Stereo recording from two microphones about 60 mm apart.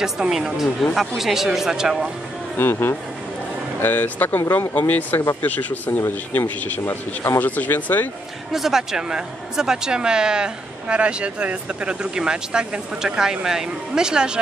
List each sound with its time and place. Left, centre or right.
0.0 s speech: centre
2.5 s speech: left
8.5 s speech: centre